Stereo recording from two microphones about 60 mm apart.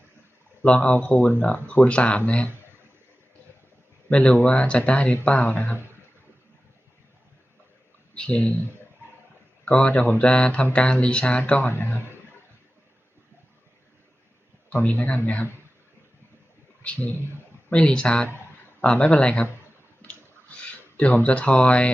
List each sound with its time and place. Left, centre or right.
0.6 s speech: left
4.1 s speech: centre
8.1 s speech: centre
9.6 s speech: centre
14.8 s speech: left
16.8 s a man's voice: left
20.0 s a sound: left
20.9 s speech: left